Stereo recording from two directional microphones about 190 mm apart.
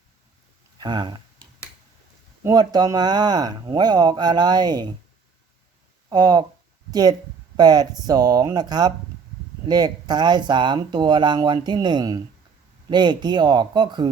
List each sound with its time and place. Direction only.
0.8 s speech: 25° right (ahead or behind)
2.4 s speech: 20° right (ahead or behind)
6.1 s speech: 20° right (ahead or behind)